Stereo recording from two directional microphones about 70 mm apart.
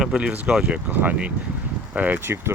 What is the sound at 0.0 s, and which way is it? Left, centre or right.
Speech, centre.